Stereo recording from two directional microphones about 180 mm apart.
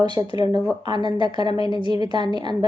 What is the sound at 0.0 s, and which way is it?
A woman's voice, 25° right (ahead or behind).